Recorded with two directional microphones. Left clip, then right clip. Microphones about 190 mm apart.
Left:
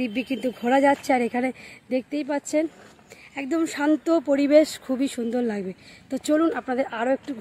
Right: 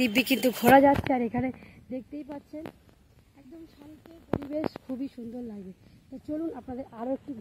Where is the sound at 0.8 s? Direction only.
15° left (ahead or behind).